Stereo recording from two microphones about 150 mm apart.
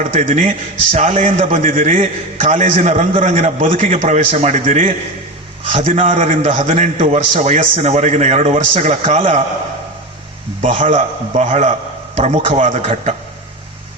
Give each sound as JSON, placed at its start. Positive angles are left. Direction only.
{"t": 0.0, "sound": "a man's voice", "side_deg": -45}
{"t": 10.6, "sound": "a man's voice", "side_deg": -55}